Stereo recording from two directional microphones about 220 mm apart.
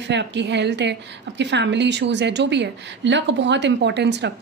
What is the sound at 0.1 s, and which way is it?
A woman's voice, 55° right (ahead or behind).